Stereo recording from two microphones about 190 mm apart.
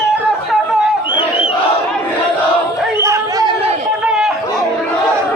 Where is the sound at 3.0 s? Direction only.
15° right (ahead or behind).